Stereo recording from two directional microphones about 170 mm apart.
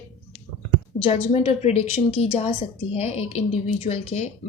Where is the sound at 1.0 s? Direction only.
35° left (ahead or behind).